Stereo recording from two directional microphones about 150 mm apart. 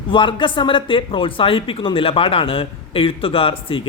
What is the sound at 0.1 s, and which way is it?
Speech, 35° left (ahead or behind).